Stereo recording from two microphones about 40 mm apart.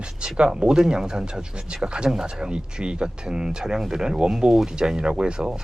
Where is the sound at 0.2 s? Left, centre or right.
Right.